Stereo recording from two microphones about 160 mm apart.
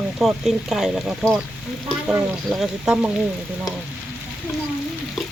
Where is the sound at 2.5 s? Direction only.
5° right (ahead or behind).